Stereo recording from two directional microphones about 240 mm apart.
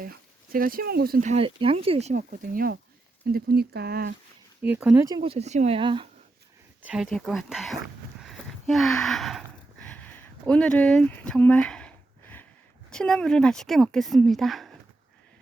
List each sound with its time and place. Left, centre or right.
0.0 s speech: right
4.6 s speech: centre
5.0 s speech: centre
6.8 s speech: centre
8.2 s a sound: centre
12.9 s speech: centre